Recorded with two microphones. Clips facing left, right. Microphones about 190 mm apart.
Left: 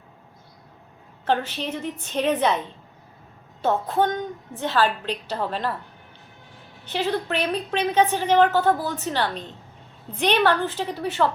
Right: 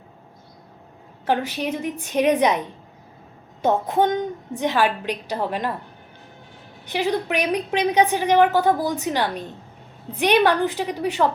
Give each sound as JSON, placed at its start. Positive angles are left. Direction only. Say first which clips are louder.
{"t": 1.2, "sound": "a woman's voice", "louder": "right 2 dB", "side_deg": -10}
{"t": 6.8, "sound": "a woman's voice", "louder": "right 2 dB", "side_deg": -10}